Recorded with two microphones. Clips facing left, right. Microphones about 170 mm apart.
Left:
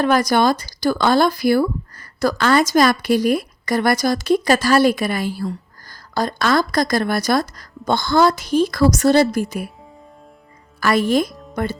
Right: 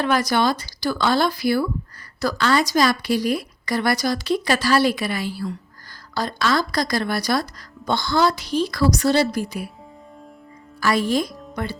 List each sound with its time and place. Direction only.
0.0 s speech: 45° left (ahead or behind)
10.8 s speech: 55° left (ahead or behind)
11.3 s music: centre (ahead or behind)
11.5 s speech: 45° left (ahead or behind)